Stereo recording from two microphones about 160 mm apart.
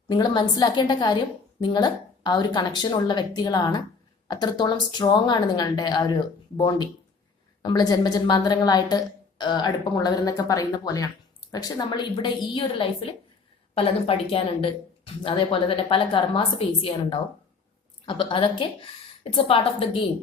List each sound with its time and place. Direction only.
0.1 s a woman's voice: 25° left (ahead or behind)